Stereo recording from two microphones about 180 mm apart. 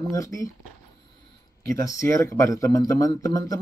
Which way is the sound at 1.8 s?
20° left (ahead or behind).